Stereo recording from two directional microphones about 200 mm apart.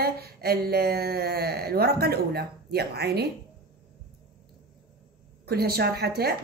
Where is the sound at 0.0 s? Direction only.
50° right (ahead or behind).